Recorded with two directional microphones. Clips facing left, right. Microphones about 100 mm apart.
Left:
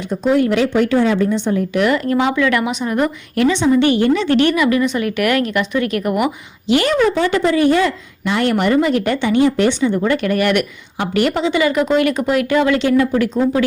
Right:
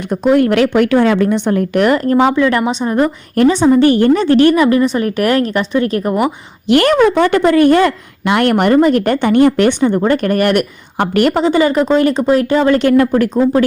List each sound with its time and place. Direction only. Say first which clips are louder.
0.1 s a woman's voice: right 4 dB; 60° right (ahead or behind); by 6.3 s 30° right (ahead or behind)
6.7 s a woman's voice: right 5 dB; 55° right (ahead or behind); by 12.8 s 35° right (ahead or behind)
12.8 s a woman's voice: right 4 dB; 55° right (ahead or behind)